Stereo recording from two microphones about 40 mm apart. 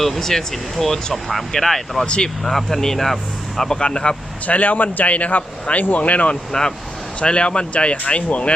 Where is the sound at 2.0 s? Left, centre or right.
Left.